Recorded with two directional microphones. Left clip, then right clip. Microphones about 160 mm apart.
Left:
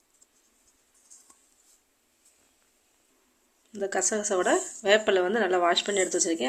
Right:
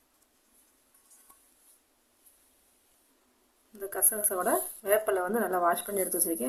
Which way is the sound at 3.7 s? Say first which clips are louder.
Left 7 dB; 35° left (ahead or behind).